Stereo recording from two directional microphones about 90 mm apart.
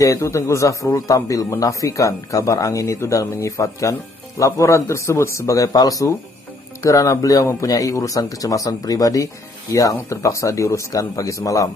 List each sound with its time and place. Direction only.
0.0 s speech: 35° left (ahead or behind)